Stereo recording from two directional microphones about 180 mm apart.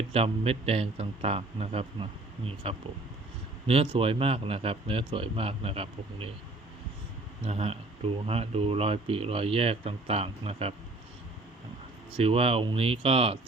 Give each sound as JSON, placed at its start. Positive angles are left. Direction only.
{"t": 0.1, "sound": "speech", "side_deg": -35}
{"t": 7.4, "sound": "speech", "side_deg": -35}
{"t": 12.1, "sound": "speech", "side_deg": -30}